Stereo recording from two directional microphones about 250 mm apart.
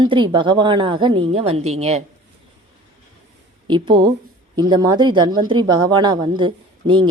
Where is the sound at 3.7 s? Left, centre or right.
Centre.